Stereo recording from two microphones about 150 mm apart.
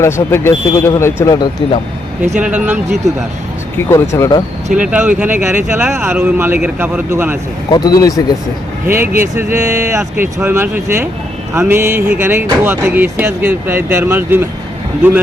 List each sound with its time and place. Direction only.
0.0 s speech: 15° left (ahead or behind)
2.4 s speech: 10° right (ahead or behind)
3.8 s speech: 20° left (ahead or behind)
4.7 s speech: 10° right (ahead or behind)
7.7 s speech: 25° left (ahead or behind)
8.9 s speech: 15° right (ahead or behind)